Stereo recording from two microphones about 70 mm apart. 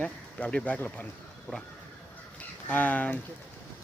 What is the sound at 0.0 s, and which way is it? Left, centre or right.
Speech, centre.